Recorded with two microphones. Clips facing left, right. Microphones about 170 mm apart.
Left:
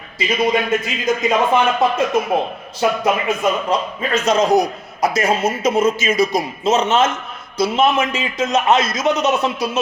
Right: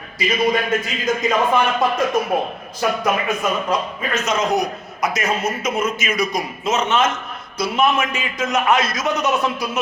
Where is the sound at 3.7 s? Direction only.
30° left (ahead or behind).